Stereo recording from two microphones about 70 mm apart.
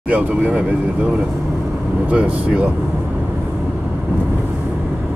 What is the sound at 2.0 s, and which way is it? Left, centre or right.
Speech, centre.